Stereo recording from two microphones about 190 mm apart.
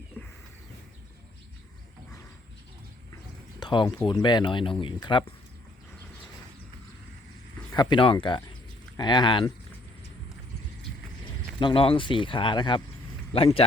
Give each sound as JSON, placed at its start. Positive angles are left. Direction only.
{"t": 0.2, "sound": "bird", "side_deg": 10}
{"t": 3.6, "sound": "a sound", "side_deg": 25}
{"t": 3.9, "sound": "speech", "side_deg": 25}
{"t": 7.7, "sound": "speech", "side_deg": 25}
{"t": 11.6, "sound": "speech", "side_deg": 30}